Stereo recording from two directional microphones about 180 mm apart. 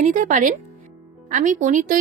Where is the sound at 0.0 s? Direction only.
45° right (ahead or behind).